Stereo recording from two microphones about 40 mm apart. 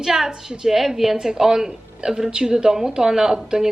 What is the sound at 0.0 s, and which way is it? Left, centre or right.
A woman's voice, centre.